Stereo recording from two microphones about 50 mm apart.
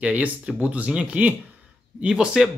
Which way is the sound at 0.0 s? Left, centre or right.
Right.